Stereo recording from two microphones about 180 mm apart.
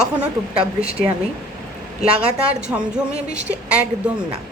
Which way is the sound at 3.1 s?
40° right (ahead or behind).